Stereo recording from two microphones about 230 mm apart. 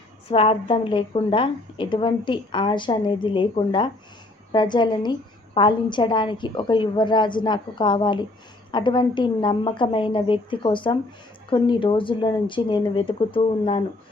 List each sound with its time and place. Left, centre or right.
0.3 s a woman's voice: left